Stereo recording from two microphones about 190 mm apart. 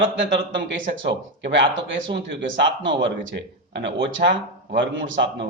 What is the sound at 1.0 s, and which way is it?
A man's voice, 70° right (ahead or behind).